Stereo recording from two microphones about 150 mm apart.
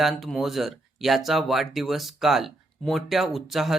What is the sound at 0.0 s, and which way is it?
Speech, centre (ahead or behind).